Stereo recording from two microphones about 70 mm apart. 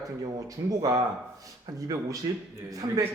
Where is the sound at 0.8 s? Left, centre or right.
Right.